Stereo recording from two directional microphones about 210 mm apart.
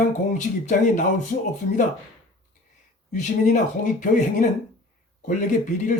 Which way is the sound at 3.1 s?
35° left (ahead or behind).